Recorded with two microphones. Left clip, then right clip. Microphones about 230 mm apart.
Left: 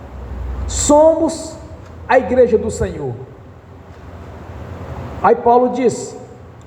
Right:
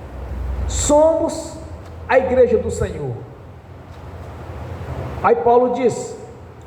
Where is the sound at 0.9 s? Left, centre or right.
Left.